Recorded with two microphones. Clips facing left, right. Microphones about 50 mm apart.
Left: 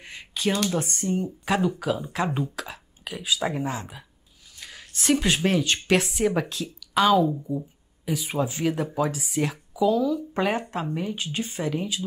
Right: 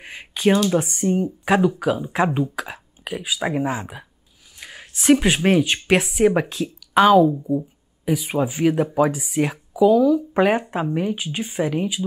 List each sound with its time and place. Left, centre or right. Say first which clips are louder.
0.0 s a sound: right 7 dB; right
0.6 s speech: right 6 dB; right
0.8 s speech: right 6 dB; centre
6.5 s a woman's voice: right 7 dB; right
7.5 s a sound: right 7 dB; centre
8.3 s speech: right 5 dB; centre
9.1 s speech: right 5 dB; centre; by 12.0 s right